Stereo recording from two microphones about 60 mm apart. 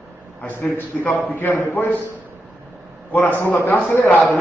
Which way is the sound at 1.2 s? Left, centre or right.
Left.